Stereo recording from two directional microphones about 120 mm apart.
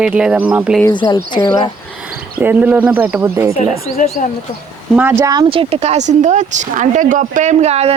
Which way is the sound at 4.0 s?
90° left.